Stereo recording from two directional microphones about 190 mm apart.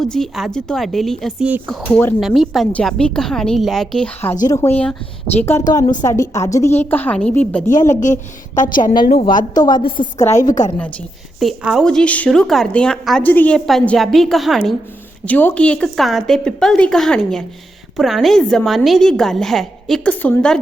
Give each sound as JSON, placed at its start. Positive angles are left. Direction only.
{"t": 0.0, "sound": "a woman's voice", "side_deg": 0}
{"t": 7.7, "sound": "a woman's voice", "side_deg": 40}
{"t": 9.6, "sound": "a woman's voice", "side_deg": 20}
{"t": 11.3, "sound": "a woman's voice", "side_deg": 0}